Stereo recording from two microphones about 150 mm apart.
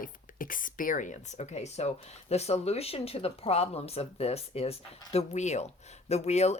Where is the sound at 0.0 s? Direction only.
65° left (ahead or behind).